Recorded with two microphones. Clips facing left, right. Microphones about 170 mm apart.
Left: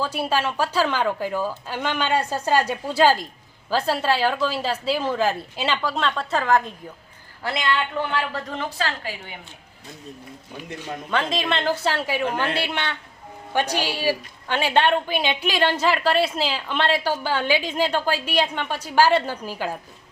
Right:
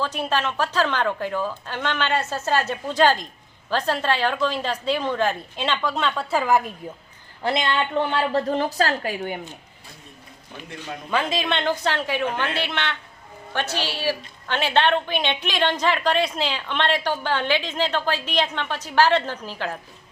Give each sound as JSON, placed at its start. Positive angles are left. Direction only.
{"t": 0.0, "sound": "a woman's voice", "side_deg": 10}
{"t": 7.4, "sound": "a woman's voice", "side_deg": -25}
{"t": 11.1, "sound": "a woman's voice", "side_deg": 0}